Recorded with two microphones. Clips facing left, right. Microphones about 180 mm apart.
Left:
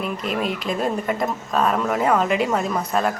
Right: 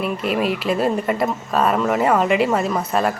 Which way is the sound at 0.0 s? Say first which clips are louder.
Right 4 dB; 5° right (ahead or behind).